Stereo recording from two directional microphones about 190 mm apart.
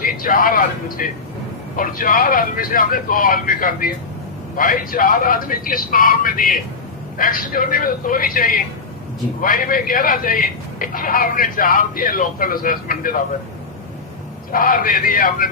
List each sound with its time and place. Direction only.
0.0 s a man's voice: 45° left (ahead or behind)
14.5 s a man's voice: 45° left (ahead or behind)